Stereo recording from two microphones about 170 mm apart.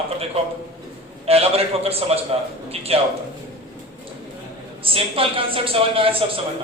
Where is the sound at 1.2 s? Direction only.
35° right (ahead or behind).